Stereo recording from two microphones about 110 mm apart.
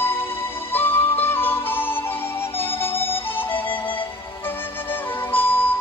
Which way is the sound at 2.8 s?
20° left (ahead or behind).